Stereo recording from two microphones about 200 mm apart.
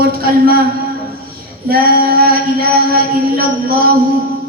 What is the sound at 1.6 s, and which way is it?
Female singing, 50° right (ahead or behind).